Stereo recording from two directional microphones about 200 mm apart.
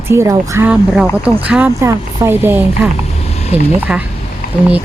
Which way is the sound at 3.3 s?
30° left (ahead or behind).